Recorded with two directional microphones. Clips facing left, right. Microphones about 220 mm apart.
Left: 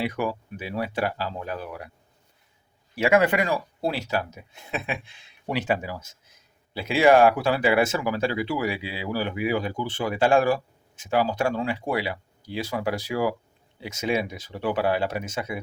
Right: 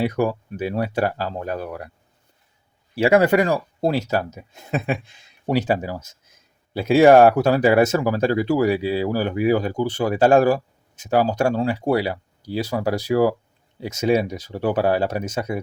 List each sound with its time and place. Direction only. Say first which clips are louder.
0.0 s speech: right 6 dB; 40° right (ahead or behind)
2.9 s speech: right 5 dB; 35° right (ahead or behind)